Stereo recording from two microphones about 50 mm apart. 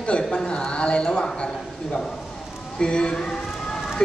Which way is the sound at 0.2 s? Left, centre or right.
Centre.